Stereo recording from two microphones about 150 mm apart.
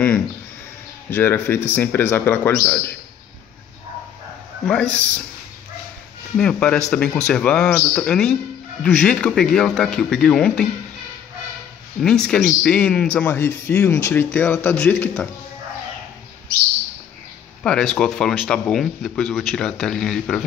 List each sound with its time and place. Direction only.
1.1 s a man's voice: 15° left (ahead or behind)
4.6 s a man's voice: 5° left (ahead or behind)
6.3 s a man's voice: 5° left (ahead or behind)
12.0 s a man's voice: 5° left (ahead or behind)
17.6 s speech: 5° left (ahead or behind)